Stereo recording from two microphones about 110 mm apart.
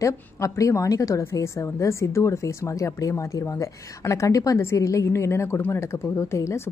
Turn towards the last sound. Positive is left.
turn(degrees=25)  # may be behind; listen again after turning